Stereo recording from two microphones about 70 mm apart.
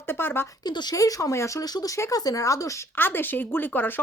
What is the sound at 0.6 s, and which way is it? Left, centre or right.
Speech, left.